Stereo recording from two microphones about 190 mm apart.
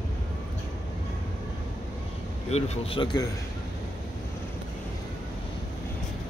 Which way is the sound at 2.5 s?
35° left (ahead or behind).